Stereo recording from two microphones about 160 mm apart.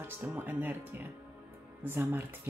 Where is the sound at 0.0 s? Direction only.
15° right (ahead or behind).